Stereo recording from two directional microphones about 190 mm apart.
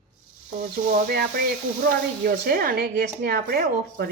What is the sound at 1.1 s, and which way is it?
A woman's voice, 55° right (ahead or behind).